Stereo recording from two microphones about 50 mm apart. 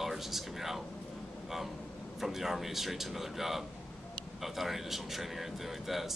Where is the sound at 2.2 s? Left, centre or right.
Centre.